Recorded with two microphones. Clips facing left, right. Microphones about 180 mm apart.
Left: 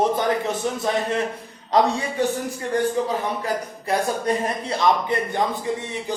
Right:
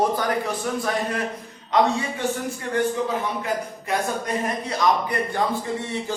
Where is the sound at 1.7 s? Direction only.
35° left (ahead or behind).